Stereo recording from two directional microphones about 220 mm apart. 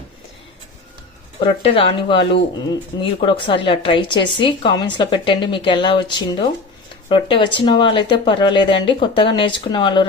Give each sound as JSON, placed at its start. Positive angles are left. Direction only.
{"t": 1.4, "sound": "speech", "side_deg": 25}